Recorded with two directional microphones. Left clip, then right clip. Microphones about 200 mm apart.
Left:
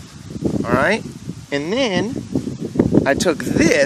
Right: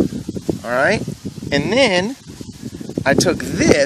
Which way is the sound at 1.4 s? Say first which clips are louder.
Right 5 dB; 20° right (ahead or behind).